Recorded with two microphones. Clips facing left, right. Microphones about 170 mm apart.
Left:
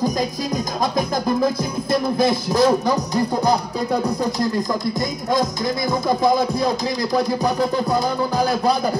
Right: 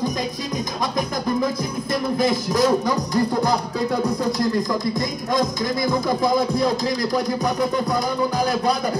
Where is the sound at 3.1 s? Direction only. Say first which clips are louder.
Even; 20° left (ahead or behind).